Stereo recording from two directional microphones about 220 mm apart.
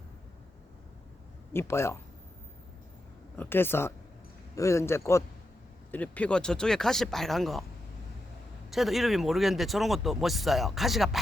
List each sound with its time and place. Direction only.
1.5 s a man's voice: 10° left (ahead or behind)
3.3 s a man's voice: 10° left (ahead or behind)
8.7 s speech: centre (ahead or behind)